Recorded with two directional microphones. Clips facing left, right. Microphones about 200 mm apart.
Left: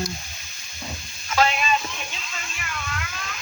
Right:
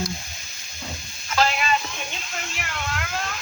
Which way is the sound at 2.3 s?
65° right (ahead or behind).